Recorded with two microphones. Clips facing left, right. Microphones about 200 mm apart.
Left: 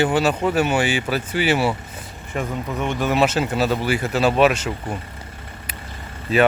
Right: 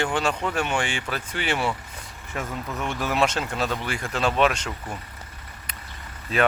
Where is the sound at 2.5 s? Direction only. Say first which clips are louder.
Left 5 dB; 15° left (ahead or behind).